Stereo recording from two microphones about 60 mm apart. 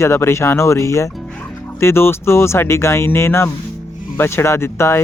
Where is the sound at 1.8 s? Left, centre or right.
Left.